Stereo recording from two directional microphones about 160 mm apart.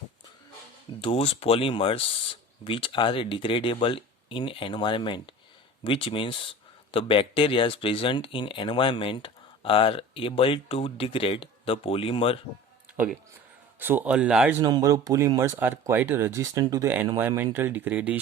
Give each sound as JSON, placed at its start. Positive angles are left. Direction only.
{"t": 1.0, "sound": "speech", "side_deg": 35}
{"t": 13.7, "sound": "speech", "side_deg": -10}
{"t": 14.6, "sound": "speech", "side_deg": -20}